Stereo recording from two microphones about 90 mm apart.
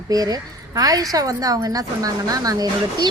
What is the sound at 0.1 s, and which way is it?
A woman's voice, 45° right (ahead or behind).